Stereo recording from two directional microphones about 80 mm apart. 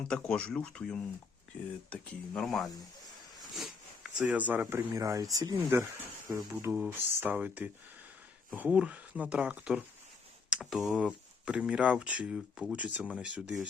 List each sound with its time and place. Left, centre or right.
0.1 s speech: centre
3.5 s a sound: centre
4.2 s speech: centre
4.9 s speech: right
6.2 s speech: right
7.2 s speech: right